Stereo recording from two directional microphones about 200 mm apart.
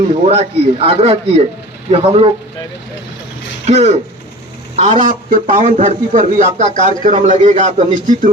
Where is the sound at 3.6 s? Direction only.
35° right (ahead or behind).